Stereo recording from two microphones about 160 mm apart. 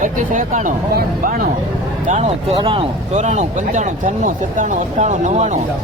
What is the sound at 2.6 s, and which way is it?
Speech, 35° right (ahead or behind).